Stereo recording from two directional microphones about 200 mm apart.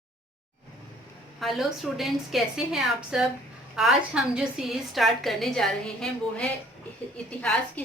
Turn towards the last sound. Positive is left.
turn(degrees=5)  # may be behind; listen again after turning